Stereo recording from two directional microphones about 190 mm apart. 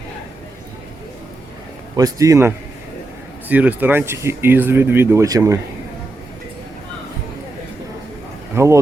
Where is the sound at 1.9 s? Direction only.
20° right (ahead or behind).